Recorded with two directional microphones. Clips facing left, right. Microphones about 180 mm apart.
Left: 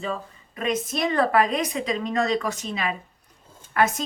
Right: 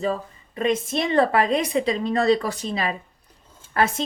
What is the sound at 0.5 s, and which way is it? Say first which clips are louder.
A woman's voice: right 3 dB; 30° right (ahead or behind).